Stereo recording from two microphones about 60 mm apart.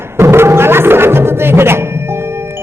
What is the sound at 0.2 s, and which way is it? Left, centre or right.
Music, right.